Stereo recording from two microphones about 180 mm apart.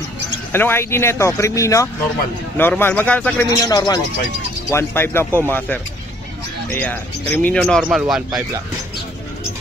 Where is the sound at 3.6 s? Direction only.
20° left (ahead or behind); by 8.2 s centre (ahead or behind).